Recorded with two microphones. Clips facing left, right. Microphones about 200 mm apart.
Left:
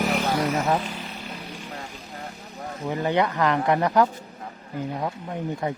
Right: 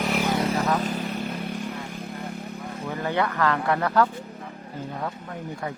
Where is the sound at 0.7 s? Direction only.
40° right (ahead or behind).